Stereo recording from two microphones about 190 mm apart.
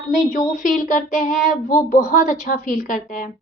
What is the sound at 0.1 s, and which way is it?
A woman's voice, 40° left (ahead or behind).